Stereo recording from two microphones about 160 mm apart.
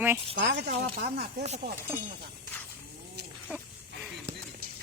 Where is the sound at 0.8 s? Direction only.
80° right.